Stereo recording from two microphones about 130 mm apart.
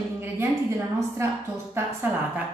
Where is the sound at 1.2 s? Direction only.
20° right (ahead or behind).